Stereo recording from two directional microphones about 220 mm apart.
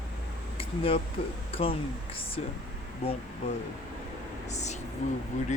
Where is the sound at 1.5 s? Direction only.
25° left (ahead or behind).